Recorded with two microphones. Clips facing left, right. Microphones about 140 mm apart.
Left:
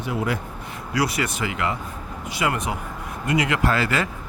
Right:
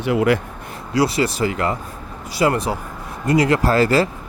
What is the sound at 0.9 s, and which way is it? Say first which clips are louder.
Speech: right 6 dB; 30° right (ahead or behind).